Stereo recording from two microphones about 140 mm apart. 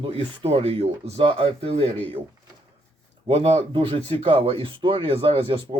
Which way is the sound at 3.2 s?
45° right (ahead or behind).